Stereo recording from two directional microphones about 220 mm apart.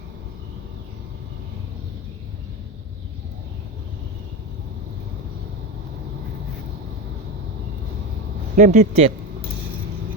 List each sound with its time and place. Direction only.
8.5 s speech: 35° right (ahead or behind)